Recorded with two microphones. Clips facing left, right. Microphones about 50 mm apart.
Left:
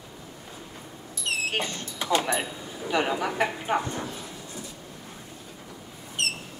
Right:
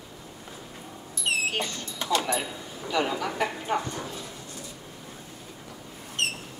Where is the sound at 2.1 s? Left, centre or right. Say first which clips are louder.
Left 1 dB; left.